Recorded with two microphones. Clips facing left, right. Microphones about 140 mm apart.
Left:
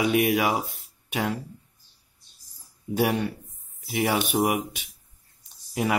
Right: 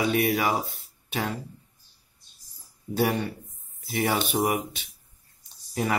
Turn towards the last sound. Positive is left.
turn(degrees=10)  # may be behind; listen again after turning